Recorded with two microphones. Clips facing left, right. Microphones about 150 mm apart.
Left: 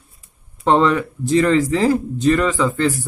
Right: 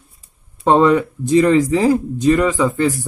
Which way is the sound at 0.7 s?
15° right (ahead or behind).